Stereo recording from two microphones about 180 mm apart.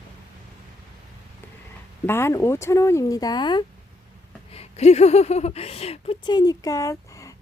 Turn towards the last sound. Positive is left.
turn(degrees=20)  # may be behind; listen again after turning